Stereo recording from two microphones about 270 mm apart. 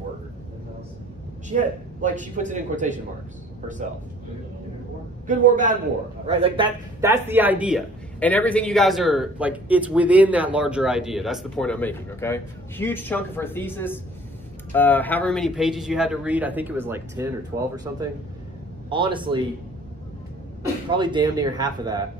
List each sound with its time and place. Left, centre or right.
1.5 s a man's voice: right
5.2 s a man's voice: right
20.9 s speech: centre